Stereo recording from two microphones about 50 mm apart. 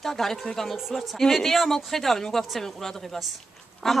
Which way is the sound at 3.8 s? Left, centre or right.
Centre.